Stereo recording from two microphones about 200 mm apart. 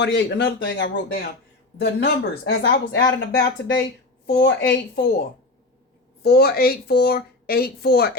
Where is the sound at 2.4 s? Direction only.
50° left (ahead or behind).